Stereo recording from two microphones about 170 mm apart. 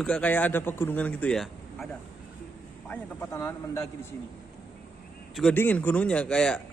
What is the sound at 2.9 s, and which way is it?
A man's voice, 15° left (ahead or behind).